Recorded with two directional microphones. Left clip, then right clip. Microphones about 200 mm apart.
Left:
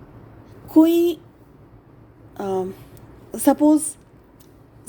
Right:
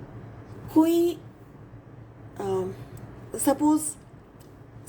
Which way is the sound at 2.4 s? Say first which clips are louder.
Left 4 dB; 50° left (ahead or behind).